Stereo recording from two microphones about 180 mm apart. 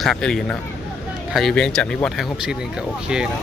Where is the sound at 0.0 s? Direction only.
Centre (ahead or behind).